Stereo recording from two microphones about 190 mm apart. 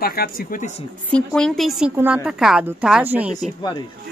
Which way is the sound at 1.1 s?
5° left (ahead or behind).